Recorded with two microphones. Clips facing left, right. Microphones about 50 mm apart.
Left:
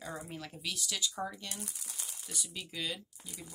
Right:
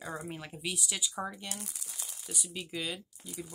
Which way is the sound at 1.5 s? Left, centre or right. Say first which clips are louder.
Right 1 dB; right.